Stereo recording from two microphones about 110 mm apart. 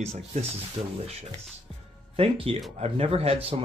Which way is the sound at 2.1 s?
60° right (ahead or behind).